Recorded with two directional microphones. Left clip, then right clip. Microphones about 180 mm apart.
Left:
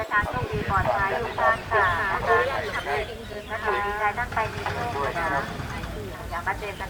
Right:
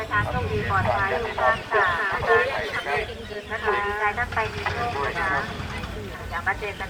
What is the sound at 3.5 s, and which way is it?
Speech, 40° right (ahead or behind).